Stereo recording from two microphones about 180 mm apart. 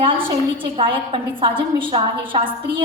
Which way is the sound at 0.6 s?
30° right (ahead or behind).